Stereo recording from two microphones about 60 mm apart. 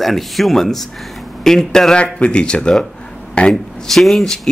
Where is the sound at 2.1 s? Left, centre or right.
Centre.